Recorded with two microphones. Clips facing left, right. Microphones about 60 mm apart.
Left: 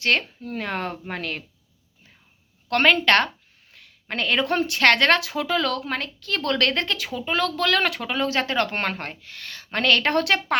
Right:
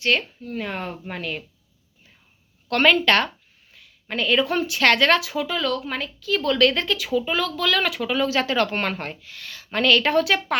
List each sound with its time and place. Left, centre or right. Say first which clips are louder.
0.0 s speech: even; left
0.4 s speech: left 1 dB; left
2.6 s speech: even; left
3.8 s a woman's voice: right 2 dB; left
5.5 s a woman's voice: left 4 dB; left